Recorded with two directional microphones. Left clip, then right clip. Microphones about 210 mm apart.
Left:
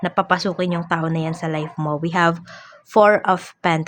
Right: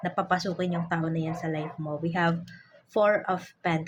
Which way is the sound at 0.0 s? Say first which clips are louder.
Left 8 dB; 35° left (ahead or behind).